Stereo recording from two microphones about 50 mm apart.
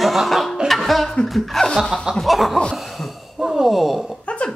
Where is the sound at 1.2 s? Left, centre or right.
Centre.